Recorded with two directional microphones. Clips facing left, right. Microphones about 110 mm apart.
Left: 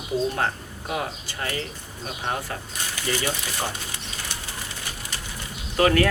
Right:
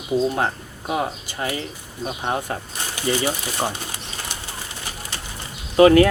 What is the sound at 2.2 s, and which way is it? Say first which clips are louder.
Speech: right 3 dB; 25° right (ahead or behind).